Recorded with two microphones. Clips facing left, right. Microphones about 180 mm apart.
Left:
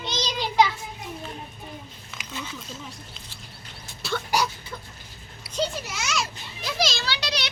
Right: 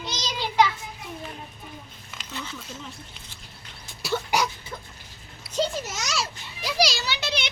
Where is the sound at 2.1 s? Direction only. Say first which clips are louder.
Even; 15° left (ahead or behind).